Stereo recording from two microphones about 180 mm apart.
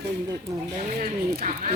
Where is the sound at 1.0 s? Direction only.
40° right (ahead or behind).